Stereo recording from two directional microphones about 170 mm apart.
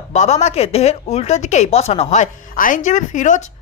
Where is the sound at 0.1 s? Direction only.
40° left (ahead or behind).